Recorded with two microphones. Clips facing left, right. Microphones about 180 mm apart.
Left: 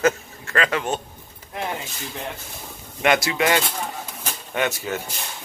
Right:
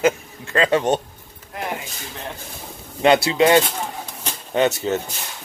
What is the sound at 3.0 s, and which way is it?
Speech, 30° right (ahead or behind).